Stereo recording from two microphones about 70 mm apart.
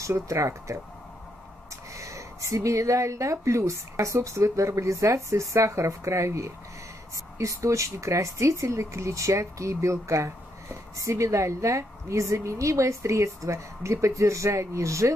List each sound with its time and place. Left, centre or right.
0.3 s speech: right
2.0 s speech: right